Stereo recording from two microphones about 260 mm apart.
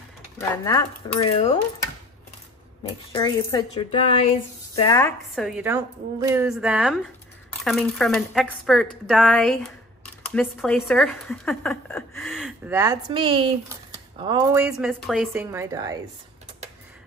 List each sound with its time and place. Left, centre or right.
0.4 s speech: centre
2.8 s speech: centre
5.3 s a woman's voice: centre
14.6 s a woman's voice: centre